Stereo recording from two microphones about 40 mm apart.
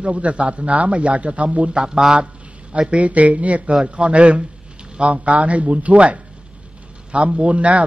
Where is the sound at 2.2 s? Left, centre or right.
Right.